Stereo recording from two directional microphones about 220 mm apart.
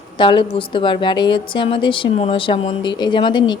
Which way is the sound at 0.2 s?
20° left (ahead or behind).